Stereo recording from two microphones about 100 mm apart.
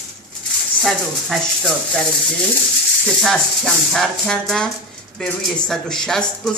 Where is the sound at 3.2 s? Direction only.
5° left (ahead or behind).